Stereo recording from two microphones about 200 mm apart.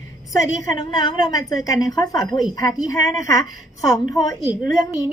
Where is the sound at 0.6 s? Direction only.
20° left (ahead or behind).